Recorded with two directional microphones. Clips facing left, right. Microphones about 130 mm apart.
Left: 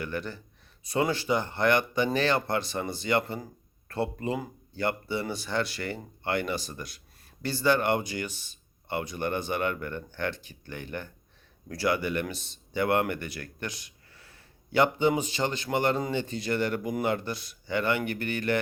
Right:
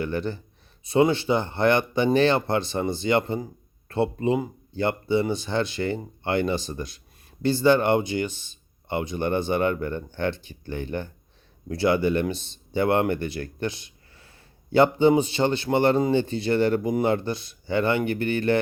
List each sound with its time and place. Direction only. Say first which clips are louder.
0.0 s speech: right 7 dB; 25° right (ahead or behind)